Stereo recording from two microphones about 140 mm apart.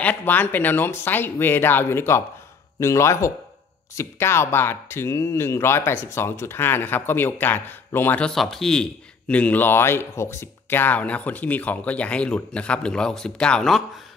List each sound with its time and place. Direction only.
0.0 s speech: 10° left (ahead or behind)